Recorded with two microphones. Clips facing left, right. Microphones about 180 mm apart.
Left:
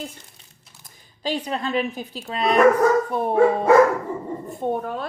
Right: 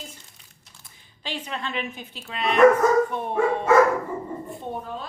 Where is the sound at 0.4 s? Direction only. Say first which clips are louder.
Left 2 dB; 30° left (ahead or behind).